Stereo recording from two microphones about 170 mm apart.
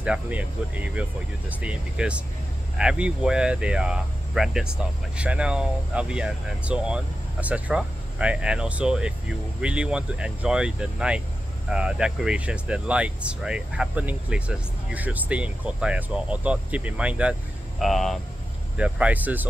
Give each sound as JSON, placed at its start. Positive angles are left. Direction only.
{"t": 0.0, "sound": "speech", "side_deg": -5}